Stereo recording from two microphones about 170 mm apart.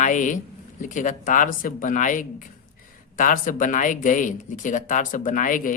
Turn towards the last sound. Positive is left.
turn(degrees=50)  # may be behind; listen again after turning